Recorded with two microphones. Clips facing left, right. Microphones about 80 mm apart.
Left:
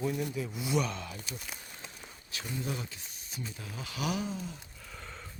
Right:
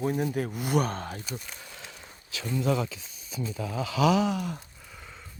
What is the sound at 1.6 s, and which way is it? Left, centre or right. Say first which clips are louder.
Walk: right 3 dB; right.